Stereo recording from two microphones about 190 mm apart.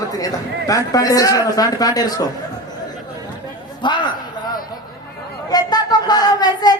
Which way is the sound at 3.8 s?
25° left (ahead or behind).